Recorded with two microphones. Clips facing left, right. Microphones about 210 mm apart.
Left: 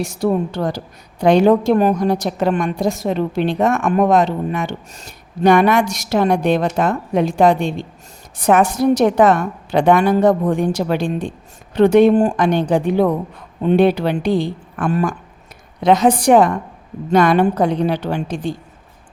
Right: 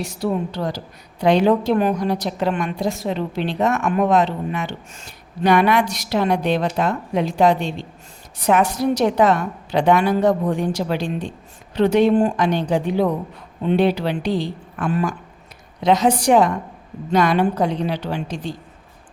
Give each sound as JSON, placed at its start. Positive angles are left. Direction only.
{"t": 0.0, "sound": "a woman's voice", "side_deg": 50}